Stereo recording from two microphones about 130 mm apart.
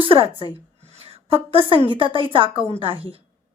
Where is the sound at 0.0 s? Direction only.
45° right (ahead or behind).